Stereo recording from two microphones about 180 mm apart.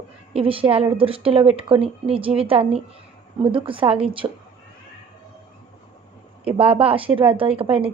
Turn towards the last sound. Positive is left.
turn(degrees=-30)  # may be behind; listen again after turning